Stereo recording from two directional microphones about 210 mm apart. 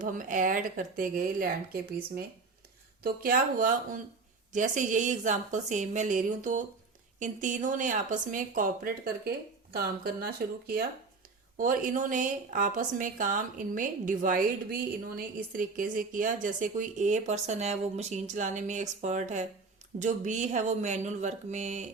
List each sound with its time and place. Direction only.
0.0 s a woman's voice: 35° right (ahead or behind)
3.0 s a woman's voice: 45° right (ahead or behind)